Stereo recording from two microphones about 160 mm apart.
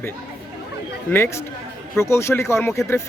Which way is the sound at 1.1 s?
15° left (ahead or behind).